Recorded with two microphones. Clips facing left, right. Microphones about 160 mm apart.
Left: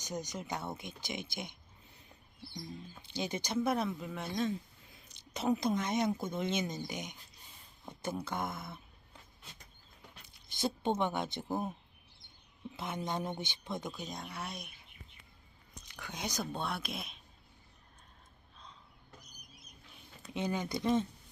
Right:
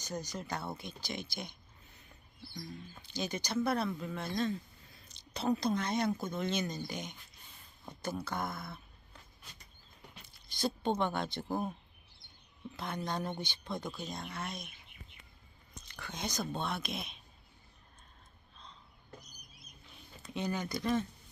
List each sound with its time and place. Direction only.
0.0 s speech: 20° left (ahead or behind)
3.0 s speech: 25° left (ahead or behind)
10.5 s speech: 20° left (ahead or behind)
12.7 s speech: 20° left (ahead or behind)
16.0 s speech: 10° left (ahead or behind)
20.3 s speech: 20° left (ahead or behind)